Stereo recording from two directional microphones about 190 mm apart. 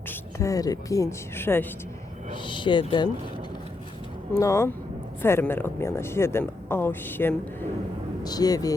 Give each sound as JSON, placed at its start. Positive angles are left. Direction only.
{"t": 0.1, "sound": "a woman's voice", "side_deg": 15}
{"t": 2.3, "sound": "speech", "side_deg": 25}
{"t": 4.4, "sound": "speech", "side_deg": 15}